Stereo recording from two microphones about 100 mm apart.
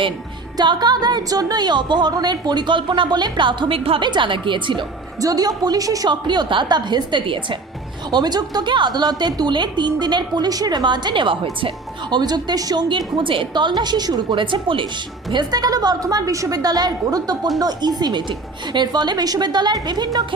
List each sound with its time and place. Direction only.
0.5 s speech: 45° right (ahead or behind)
5.2 s speech: 40° right (ahead or behind); by 11.3 s 55° right (ahead or behind)
12.1 s speech: 45° right (ahead or behind)
12.9 s speech: 55° right (ahead or behind)
15.3 s a woman's voice: 45° right (ahead or behind)